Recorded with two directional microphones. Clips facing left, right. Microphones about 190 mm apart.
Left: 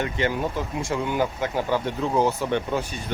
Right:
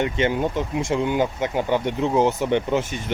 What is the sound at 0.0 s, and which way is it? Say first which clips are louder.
Speech: right 3 dB; 20° right (ahead or behind).